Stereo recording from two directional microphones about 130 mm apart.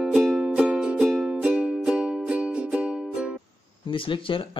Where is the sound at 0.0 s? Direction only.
Centre (ahead or behind).